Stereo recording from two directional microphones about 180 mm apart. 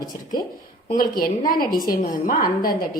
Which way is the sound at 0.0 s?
20° left (ahead or behind).